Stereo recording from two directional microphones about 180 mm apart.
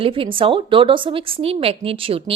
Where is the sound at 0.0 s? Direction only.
30° right (ahead or behind).